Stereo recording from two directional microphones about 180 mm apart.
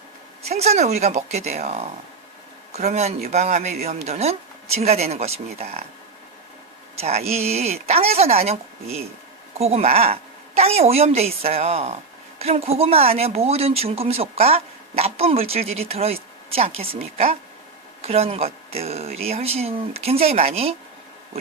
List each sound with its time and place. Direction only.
0.4 s speech: 35° right (ahead or behind)
7.0 s speech: 35° right (ahead or behind)